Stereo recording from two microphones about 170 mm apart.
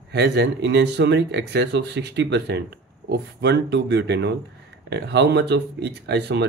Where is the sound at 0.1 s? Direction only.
75° right (ahead or behind).